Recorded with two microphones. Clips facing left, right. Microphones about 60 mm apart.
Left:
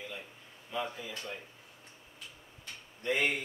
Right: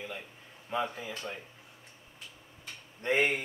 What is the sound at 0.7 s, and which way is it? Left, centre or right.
Speech, right.